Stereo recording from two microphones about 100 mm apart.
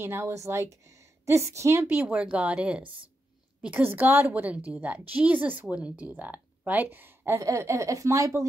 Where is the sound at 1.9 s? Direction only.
15° right (ahead or behind).